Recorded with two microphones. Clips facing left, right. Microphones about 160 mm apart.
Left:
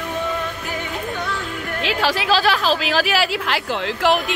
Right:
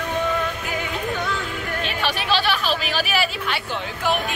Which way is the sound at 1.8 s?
90° left.